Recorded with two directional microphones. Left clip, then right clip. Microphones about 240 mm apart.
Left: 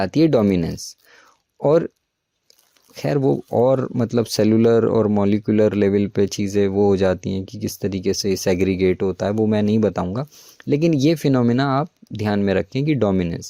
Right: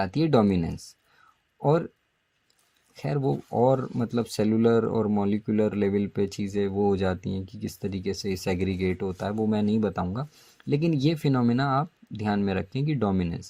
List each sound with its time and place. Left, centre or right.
0.0 s speech: left
2.9 s speech: left